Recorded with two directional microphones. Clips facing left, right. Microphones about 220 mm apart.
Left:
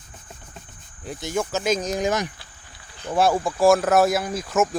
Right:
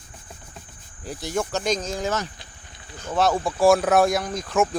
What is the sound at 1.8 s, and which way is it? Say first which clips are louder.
A man's voice: left 3 dB; 15° left (ahead or behind).